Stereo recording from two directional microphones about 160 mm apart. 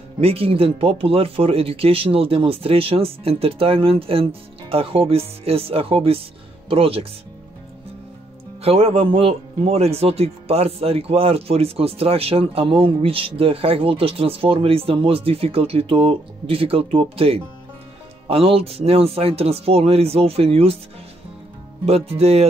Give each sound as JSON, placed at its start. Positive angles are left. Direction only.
{"t": 0.2, "sound": "a man's voice", "side_deg": -35}
{"t": 8.6, "sound": "a man's voice", "side_deg": -35}
{"t": 21.8, "sound": "a man's voice", "side_deg": -40}